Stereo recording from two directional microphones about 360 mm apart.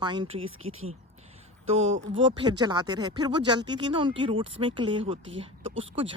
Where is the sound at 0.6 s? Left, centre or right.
Right.